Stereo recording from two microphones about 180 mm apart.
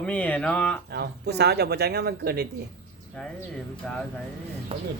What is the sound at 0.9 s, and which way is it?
Speech, 65° right (ahead or behind).